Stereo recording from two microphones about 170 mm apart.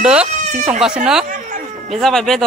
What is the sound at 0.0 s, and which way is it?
Speech, 5° right (ahead or behind).